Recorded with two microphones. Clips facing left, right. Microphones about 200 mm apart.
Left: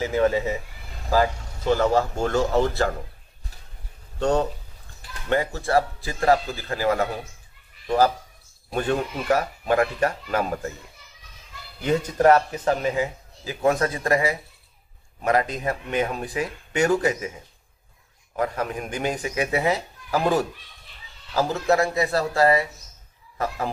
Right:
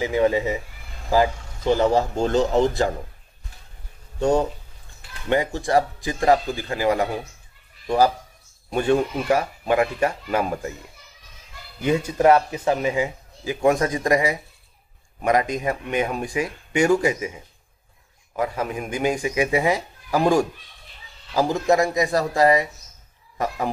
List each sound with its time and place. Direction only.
0.0 s a man's voice: 15° right (ahead or behind)
4.2 s a man's voice: 10° right (ahead or behind)
8.7 s a man's voice: 15° right (ahead or behind)
11.8 s a man's voice: 10° right (ahead or behind)
18.3 s a man's voice: 10° right (ahead or behind)